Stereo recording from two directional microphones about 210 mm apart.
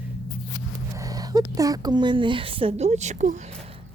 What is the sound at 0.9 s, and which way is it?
Speech, 15° right (ahead or behind).